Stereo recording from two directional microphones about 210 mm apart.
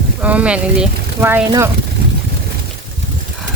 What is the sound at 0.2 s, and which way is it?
Speech, 5° right (ahead or behind).